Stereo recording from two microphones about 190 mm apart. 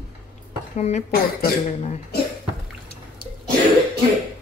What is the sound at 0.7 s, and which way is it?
Speech, 35° left (ahead or behind).